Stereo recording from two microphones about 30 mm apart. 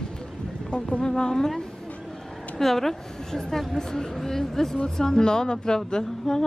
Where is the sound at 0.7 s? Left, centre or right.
Left.